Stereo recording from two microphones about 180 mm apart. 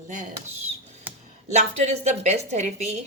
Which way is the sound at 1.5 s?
40° right (ahead or behind).